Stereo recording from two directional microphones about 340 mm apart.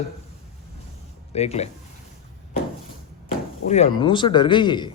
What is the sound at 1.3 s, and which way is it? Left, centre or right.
Speech, centre.